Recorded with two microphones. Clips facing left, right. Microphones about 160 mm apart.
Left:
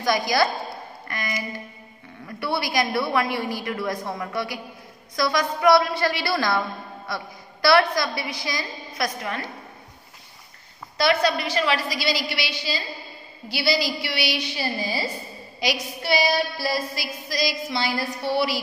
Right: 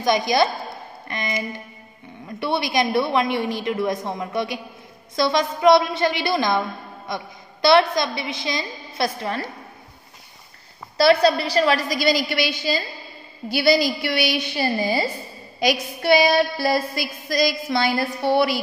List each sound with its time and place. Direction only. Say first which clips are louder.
0.0 s a woman's voice: right 3 dB; 20° right (ahead or behind)
11.0 s a woman's voice: right 5 dB; 35° right (ahead or behind); by 15.0 s 50° right (ahead or behind)
15.6 s a sound: right 6 dB; 55° right (ahead or behind)
16.9 s a woman's voice: right 5 dB; 50° right (ahead or behind)